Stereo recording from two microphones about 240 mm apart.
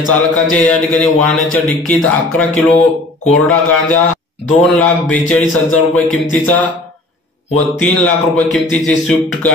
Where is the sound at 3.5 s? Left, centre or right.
Centre.